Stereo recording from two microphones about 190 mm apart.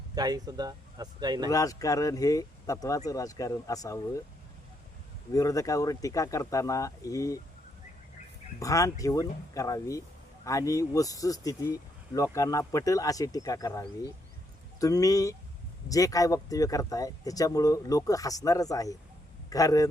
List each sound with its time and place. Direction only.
0.1 s speech: 20° right (ahead or behind)
1.5 s speech: 20° left (ahead or behind)
5.3 s speech: 20° left (ahead or behind)
8.5 s speech: 15° left (ahead or behind)